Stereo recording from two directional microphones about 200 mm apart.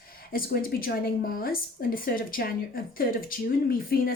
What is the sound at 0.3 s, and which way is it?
A woman's voice, 45° left (ahead or behind).